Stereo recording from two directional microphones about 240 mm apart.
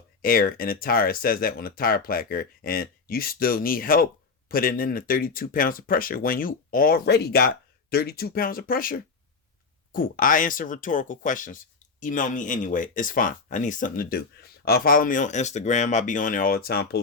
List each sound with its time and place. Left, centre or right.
0.2 s speech: left